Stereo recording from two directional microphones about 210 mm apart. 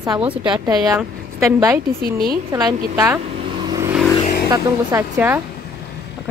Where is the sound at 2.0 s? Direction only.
45° right (ahead or behind).